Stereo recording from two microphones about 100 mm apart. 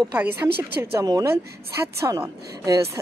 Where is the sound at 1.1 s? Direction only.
35° right (ahead or behind).